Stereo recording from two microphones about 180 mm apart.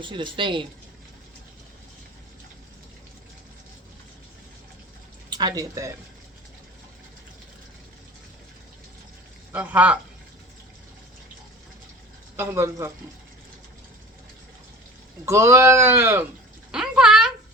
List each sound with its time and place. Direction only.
0.0 s speech: 25° right (ahead or behind)
5.3 s speech: 25° right (ahead or behind)
9.5 s speech: 5° right (ahead or behind)
12.4 s speech: 15° right (ahead or behind)
15.3 s speech: 15° right (ahead or behind)
16.7 s bathtub: 5° right (ahead or behind)